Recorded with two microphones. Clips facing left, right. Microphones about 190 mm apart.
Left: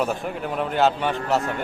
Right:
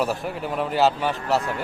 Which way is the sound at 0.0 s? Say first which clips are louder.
Even; centre (ahead or behind).